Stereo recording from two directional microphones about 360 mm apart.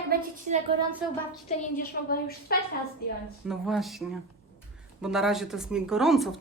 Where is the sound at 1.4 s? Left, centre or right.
Left.